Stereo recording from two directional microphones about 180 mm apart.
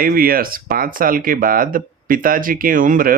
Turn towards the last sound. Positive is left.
turn(degrees=-50)  # may be behind; listen again after turning